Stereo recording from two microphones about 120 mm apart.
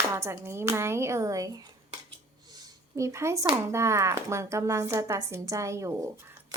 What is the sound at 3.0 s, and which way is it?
A woman's voice, 25° right (ahead or behind).